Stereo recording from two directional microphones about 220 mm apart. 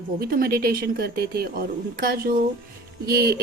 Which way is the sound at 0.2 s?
45° right (ahead or behind).